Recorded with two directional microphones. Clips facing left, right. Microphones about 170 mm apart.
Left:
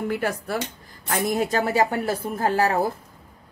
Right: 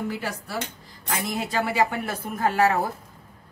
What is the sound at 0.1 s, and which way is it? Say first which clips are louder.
A woman's voice: left 5 dB; 55° left (ahead or behind).